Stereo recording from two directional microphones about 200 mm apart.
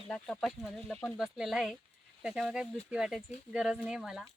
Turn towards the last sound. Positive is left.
turn(degrees=-5)  # may be behind; listen again after turning